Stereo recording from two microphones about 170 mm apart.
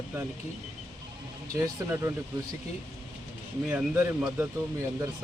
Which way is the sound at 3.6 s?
10° right (ahead or behind).